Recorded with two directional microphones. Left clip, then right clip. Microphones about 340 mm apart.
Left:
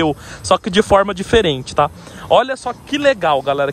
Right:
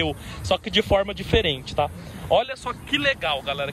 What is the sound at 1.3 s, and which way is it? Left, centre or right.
Speech, left.